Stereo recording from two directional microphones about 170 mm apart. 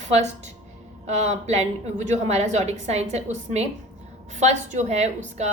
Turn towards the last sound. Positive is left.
turn(degrees=-40)  # may be behind; listen again after turning